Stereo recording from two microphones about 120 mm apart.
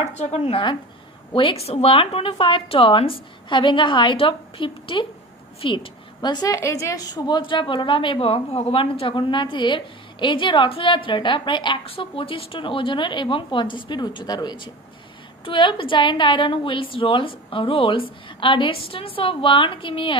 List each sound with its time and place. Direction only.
0.0 s a woman's voice: 65° left (ahead or behind); by 20.2 s 45° left (ahead or behind)